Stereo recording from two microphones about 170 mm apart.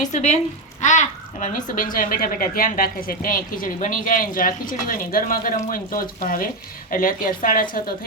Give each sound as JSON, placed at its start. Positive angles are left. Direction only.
{"t": 0.0, "sound": "a woman's voice", "side_deg": 45}